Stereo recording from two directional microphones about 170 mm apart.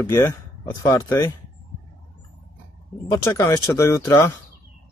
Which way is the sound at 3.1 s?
20° left (ahead or behind).